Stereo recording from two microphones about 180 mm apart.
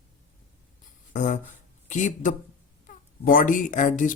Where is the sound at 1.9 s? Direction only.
45° left (ahead or behind).